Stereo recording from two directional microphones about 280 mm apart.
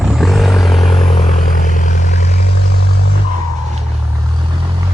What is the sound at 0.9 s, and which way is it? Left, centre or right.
Vehicle, centre.